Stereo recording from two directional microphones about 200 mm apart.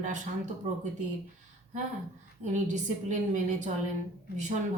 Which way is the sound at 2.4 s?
40° right (ahead or behind).